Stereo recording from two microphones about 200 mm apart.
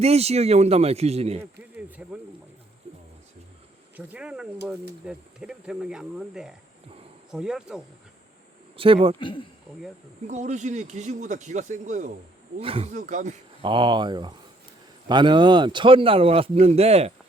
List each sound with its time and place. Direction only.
0.0 s speech: 30° right (ahead or behind)
2.0 s speech: 5° right (ahead or behind)
2.8 s a sound: 30° right (ahead or behind)
3.9 s speech: 5° right (ahead or behind)
8.7 s speech: 25° right (ahead or behind)
9.1 s speech: 25° left (ahead or behind)
10.2 s speech: 35° right (ahead or behind)
13.7 s speech: 25° right (ahead or behind)